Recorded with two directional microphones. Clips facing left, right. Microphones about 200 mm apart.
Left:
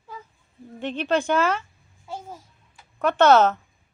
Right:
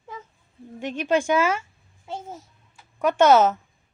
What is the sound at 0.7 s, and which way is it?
Speech, 10° right (ahead or behind).